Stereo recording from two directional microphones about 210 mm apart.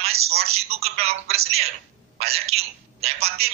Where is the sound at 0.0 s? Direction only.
30° right (ahead or behind).